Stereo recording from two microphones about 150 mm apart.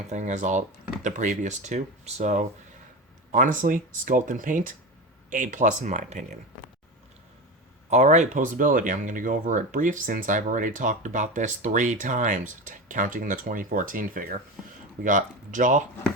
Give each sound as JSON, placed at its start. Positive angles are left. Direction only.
{"t": 0.1, "sound": "speech", "side_deg": -50}
{"t": 3.3, "sound": "speech", "side_deg": -60}
{"t": 7.9, "sound": "speech", "side_deg": -50}